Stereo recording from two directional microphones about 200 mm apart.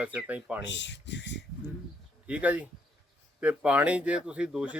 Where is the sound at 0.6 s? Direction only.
65° left (ahead or behind).